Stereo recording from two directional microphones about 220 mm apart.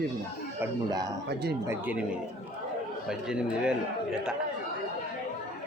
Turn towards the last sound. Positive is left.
turn(degrees=-5)  # may be behind; listen again after turning